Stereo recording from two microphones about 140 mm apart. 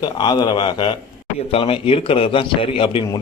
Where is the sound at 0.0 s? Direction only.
30° left (ahead or behind).